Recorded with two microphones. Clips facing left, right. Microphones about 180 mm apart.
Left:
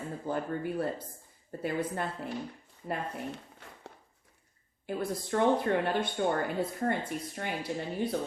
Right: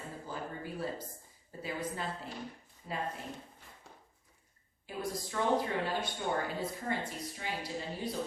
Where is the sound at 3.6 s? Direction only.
75° left (ahead or behind).